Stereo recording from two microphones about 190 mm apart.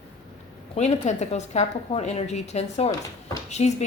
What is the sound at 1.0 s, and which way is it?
A woman's voice, 35° left (ahead or behind).